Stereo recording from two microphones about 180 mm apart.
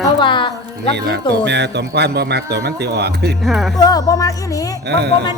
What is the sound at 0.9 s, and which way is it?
A man's voice, 70° right (ahead or behind).